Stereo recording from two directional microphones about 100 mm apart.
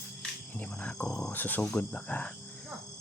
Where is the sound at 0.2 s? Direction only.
10° left (ahead or behind).